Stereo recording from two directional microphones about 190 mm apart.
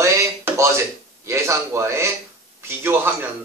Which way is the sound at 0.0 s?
15° right (ahead or behind).